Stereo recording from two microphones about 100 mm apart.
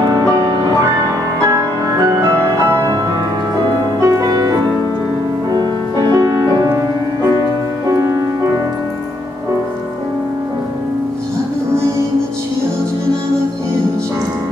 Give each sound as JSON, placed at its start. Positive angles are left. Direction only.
{"t": 0.0, "sound": "music", "side_deg": -40}
{"t": 1.5, "sound": "music", "side_deg": -30}
{"t": 4.0, "sound": "music", "side_deg": -35}
{"t": 7.9, "sound": "music", "side_deg": -30}